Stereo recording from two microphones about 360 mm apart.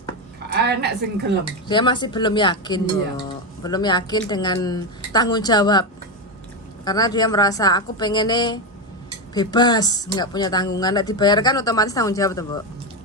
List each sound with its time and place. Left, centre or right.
0.5 s a sound: right
1.6 s a woman's voice: centre
6.8 s a woman's voice: centre